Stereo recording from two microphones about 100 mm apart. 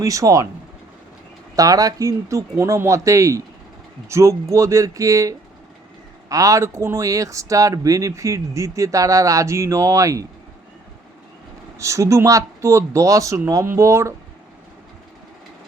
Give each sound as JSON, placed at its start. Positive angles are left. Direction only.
{"t": 0.0, "sound": "speech", "side_deg": -35}
{"t": 1.5, "sound": "speech", "side_deg": -35}
{"t": 11.8, "sound": "speech", "side_deg": -30}